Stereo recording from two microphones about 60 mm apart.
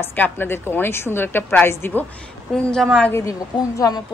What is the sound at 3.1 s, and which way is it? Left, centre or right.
Speech, left.